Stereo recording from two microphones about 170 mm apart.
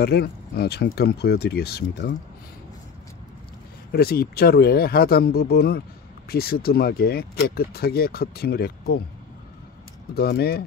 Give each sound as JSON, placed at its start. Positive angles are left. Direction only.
{"t": 0.0, "sound": "speech", "side_deg": 65}
{"t": 3.9, "sound": "speech", "side_deg": 65}
{"t": 10.1, "sound": "speech", "side_deg": 70}